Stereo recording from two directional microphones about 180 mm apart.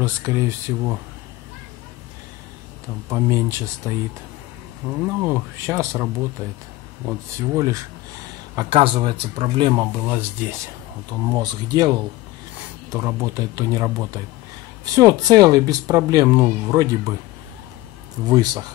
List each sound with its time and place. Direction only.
0.0 s speech: 15° right (ahead or behind)
3.1 s speech: 15° right (ahead or behind)
5.0 s speech: 15° right (ahead or behind)
7.1 s speech: 15° right (ahead or behind)
8.5 s speech: 30° right (ahead or behind)
9.8 s speech: 10° right (ahead or behind)
11.1 s speech: 25° right (ahead or behind)
18.3 s speech: 20° right (ahead or behind)